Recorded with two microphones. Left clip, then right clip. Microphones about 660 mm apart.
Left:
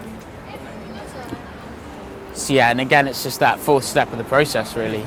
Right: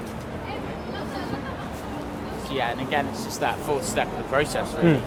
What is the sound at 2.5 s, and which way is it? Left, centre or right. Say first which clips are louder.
Speech: left 11 dB; left.